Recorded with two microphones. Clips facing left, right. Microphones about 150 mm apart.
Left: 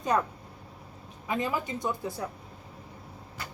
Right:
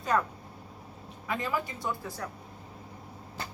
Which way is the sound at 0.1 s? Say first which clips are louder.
Even; 20° left (ahead or behind).